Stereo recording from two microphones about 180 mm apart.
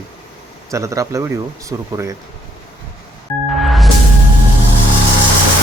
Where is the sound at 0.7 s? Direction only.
15° right (ahead or behind).